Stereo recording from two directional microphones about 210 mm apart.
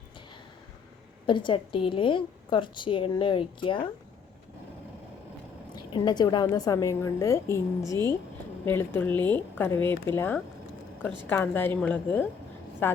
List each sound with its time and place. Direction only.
1.3 s a woman's voice: 25° left (ahead or behind)
5.7 s a woman's voice: 20° left (ahead or behind)
8.6 s a woman's voice: 10° left (ahead or behind)